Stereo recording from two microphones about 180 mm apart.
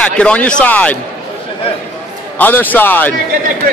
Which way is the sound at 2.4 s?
10° left (ahead or behind).